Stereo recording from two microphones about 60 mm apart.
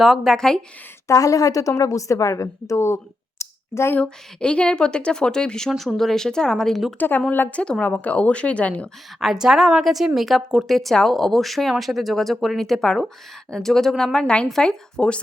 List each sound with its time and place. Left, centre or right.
0.0 s speech: centre
0.3 s speech: centre
1.0 s a woman's voice: left
4.4 s speech: centre
7.3 s a woman's voice: left
7.5 s a woman's voice: centre
9.2 s speech: centre